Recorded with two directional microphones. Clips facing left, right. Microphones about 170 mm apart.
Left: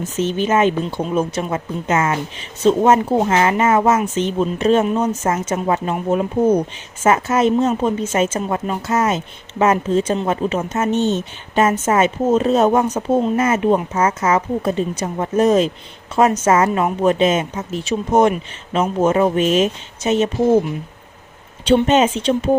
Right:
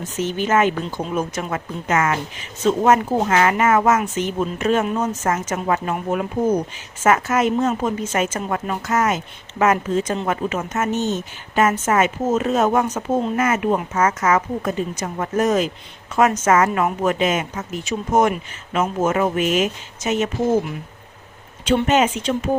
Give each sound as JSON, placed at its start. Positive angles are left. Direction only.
{"t": 0.2, "sound": "a woman's voice", "side_deg": 20}
{"t": 21.8, "sound": "a woman's voice", "side_deg": 25}